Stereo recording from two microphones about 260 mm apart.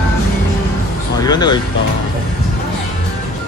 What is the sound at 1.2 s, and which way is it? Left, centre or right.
Speech, centre.